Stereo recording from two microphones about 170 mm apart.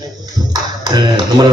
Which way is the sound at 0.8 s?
25° right (ahead or behind).